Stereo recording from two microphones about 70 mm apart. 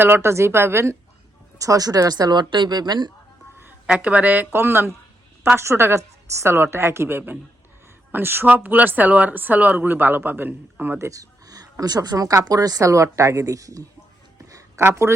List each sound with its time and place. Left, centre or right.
0.0 s a woman's voice: right
1.5 s speech: right
3.8 s a woman's voice: centre; by 13.8 s right
14.8 s a woman's voice: right